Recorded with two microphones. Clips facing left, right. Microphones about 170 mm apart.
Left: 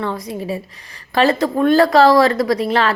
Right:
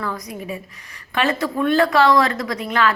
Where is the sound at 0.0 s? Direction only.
30° left (ahead or behind).